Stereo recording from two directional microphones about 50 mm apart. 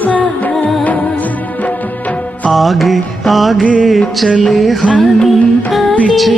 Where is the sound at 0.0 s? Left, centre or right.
Left.